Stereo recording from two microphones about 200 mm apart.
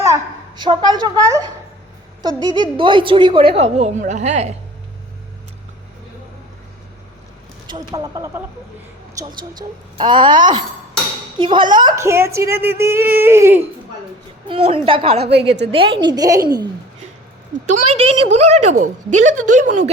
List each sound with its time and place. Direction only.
0.0 s a child's voice: 20° right (ahead or behind)
2.6 s a woman's voice: 25° right (ahead or behind)
7.7 s a woman's voice: 20° right (ahead or behind)
14.4 s speech: 30° right (ahead or behind)
15.2 s a woman's voice: 55° right (ahead or behind)
15.7 s speech: 25° right (ahead or behind)
17.7 s a woman's voice: 30° right (ahead or behind)